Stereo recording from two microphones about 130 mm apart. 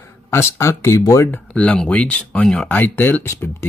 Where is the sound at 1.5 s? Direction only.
10° left (ahead or behind).